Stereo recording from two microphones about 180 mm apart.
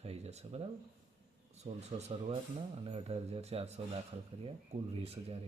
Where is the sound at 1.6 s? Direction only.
35° right (ahead or behind).